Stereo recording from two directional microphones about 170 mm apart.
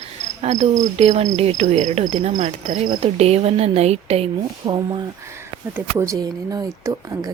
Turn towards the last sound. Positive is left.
turn(degrees=-20)  # may be behind; listen again after turning